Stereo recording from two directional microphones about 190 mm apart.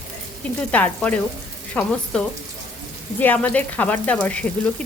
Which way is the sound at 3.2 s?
10° left (ahead or behind).